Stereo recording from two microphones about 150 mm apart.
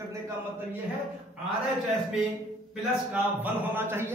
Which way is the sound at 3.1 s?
10° right (ahead or behind).